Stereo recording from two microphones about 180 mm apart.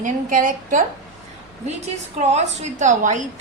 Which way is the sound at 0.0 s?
50° right (ahead or behind).